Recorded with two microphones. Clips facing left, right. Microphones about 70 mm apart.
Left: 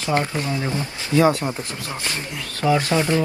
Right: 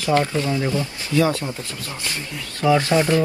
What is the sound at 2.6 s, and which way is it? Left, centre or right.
Speech, left.